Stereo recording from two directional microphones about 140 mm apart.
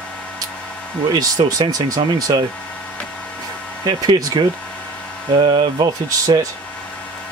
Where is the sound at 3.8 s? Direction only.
30° right (ahead or behind).